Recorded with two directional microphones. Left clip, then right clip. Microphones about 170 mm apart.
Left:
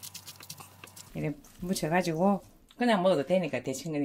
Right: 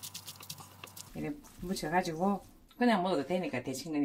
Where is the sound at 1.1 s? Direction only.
60° left (ahead or behind).